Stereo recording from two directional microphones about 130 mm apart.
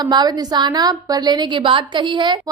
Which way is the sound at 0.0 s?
30° right (ahead or behind).